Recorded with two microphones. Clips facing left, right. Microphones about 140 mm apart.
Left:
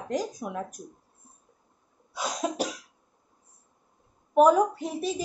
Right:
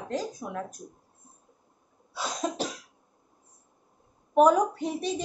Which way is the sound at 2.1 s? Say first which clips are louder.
Left 1 dB; 10° left (ahead or behind).